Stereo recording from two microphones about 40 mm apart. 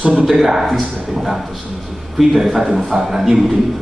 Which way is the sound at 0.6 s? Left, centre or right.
Centre.